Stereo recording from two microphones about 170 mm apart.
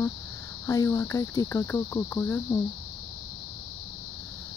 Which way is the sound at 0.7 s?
20° left (ahead or behind).